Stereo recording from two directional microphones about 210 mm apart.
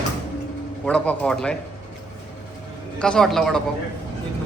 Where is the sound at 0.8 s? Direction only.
5° left (ahead or behind).